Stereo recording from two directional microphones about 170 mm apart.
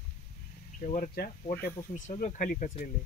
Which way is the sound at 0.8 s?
45° left (ahead or behind).